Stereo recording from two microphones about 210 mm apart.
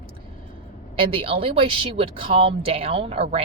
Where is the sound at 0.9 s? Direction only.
25° right (ahead or behind).